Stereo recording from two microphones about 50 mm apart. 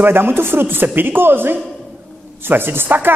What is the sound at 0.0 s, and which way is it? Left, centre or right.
A man's voice, right.